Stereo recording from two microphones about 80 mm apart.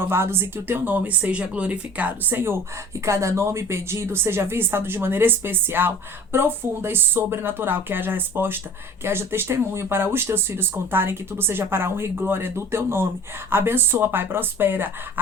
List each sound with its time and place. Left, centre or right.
0.0 s speech: right